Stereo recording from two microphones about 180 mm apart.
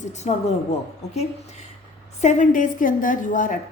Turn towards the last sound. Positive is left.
turn(degrees=45)  # may be behind; listen again after turning